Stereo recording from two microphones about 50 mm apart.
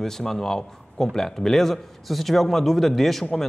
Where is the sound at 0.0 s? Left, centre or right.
Centre.